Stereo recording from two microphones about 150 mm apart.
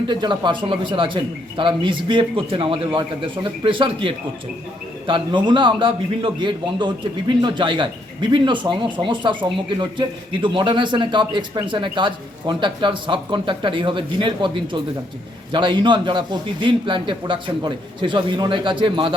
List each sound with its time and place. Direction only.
0.1 s a man's voice: 30° right (ahead or behind)